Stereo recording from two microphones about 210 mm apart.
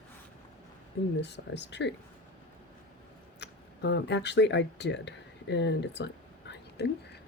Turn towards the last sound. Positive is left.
turn(degrees=50)  # may be behind; listen again after turning